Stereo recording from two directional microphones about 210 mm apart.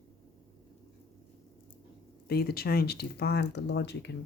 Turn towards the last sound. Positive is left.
turn(degrees=55)  # may be behind; listen again after turning